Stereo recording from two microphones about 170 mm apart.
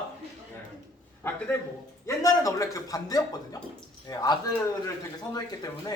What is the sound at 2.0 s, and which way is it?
Speech, 20° left (ahead or behind).